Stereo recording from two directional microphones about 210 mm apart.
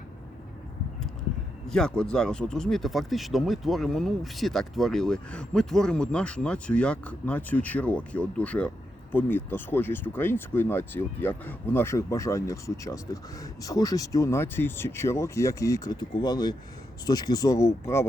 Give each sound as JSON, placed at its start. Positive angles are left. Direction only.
{"t": 1.6, "sound": "speech", "side_deg": 5}